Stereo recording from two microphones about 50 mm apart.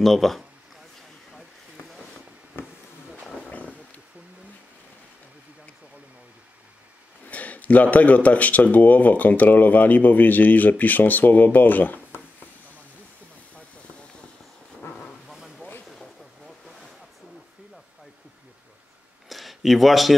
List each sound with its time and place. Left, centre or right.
0.0 s speech: centre
1.3 s vehicle: centre
3.4 s roaring cats: left
7.2 s a man's voice: left
15.2 s a sound: centre
16.4 s ocean: centre
19.2 s a sound: centre